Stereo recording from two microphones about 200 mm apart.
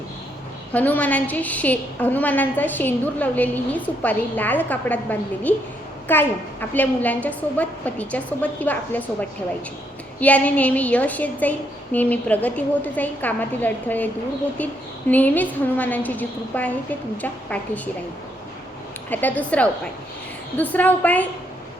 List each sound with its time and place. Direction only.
0.7 s a woman's voice: 10° left (ahead or behind)
10.2 s a woman's voice: 5° left (ahead or behind)
19.1 s a woman's voice: 10° left (ahead or behind)